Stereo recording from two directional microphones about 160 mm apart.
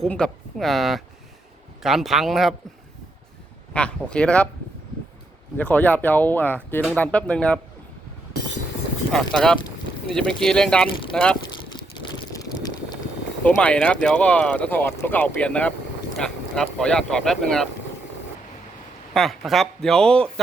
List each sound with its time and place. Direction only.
0.0 s speech: 5° left (ahead or behind)
3.7 s speech: 5° left (ahead or behind)
5.5 s speech: 10° left (ahead or behind)
9.1 s speech: 5° left (ahead or behind)
11.4 s a sound: 25° left (ahead or behind)
13.4 s speech: 5° left (ahead or behind)
19.1 s speech: centre (ahead or behind)